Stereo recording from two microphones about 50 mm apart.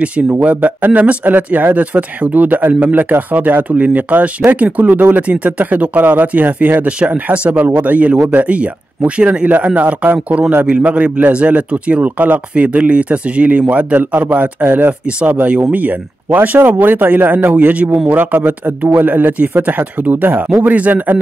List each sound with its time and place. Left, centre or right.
0.4 s a man's voice: right
16.3 s speech: right